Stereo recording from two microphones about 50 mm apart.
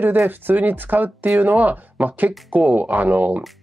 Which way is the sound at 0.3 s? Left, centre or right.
Right.